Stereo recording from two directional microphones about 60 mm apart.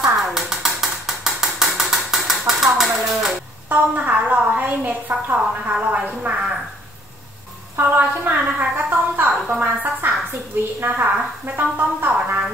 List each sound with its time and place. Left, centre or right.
0.2 s ratchet: centre
3.6 s a woman's voice: right
7.7 s a woman's voice: right